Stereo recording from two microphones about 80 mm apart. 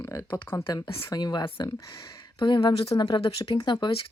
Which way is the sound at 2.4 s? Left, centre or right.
Left.